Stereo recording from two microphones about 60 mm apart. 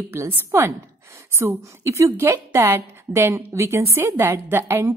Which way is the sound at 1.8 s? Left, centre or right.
Right.